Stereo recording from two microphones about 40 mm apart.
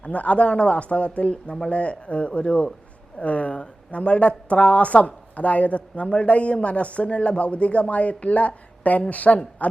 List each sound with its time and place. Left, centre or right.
0.0 s a woman's voice: left